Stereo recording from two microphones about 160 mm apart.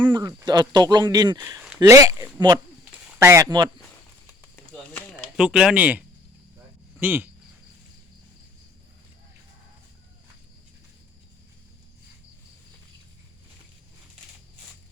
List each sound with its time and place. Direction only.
0.1 s speech: 25° right (ahead or behind)
4.5 s a sound: 10° left (ahead or behind)
5.4 s speech: 5° right (ahead or behind)
7.0 s speech: 15° right (ahead or behind)